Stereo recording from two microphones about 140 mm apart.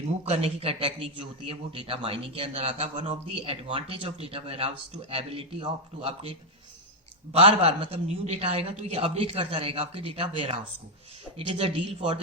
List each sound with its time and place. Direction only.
0.3 s speech: 45° right (ahead or behind)
7.3 s speech: 45° right (ahead or behind)